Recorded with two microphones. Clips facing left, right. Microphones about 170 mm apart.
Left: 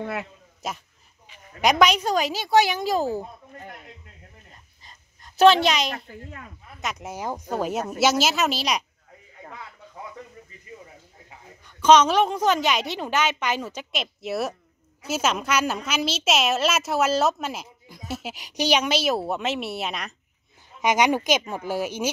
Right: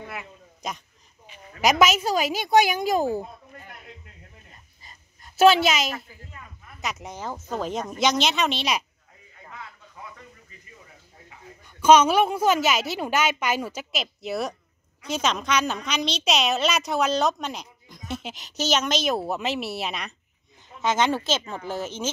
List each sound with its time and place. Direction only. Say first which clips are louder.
0.0 s speech: left 7 dB; 70° left (ahead or behind)
0.6 s a woman's voice: left 1 dB; 5° left (ahead or behind); by 3.2 s 15° right (ahead or behind)
4.8 s a sound: right 1 dB; 5° right (ahead or behind)
6.8 s a woman's voice: left 2 dB; centre (ahead or behind)
11.8 s a woman's voice: even; 10° right (ahead or behind)
20.8 s speech: left 2 dB; 15° left (ahead or behind)